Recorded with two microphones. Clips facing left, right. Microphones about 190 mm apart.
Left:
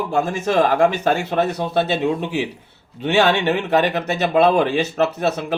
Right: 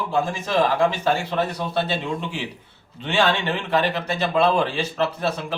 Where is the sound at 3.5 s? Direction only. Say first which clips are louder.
Left 5 dB; 50° left (ahead or behind).